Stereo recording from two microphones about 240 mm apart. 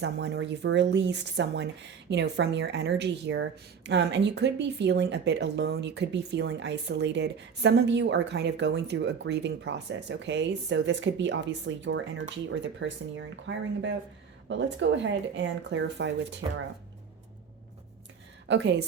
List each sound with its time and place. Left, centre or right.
0.0 s a woman's voice: right
18.4 s a woman's voice: right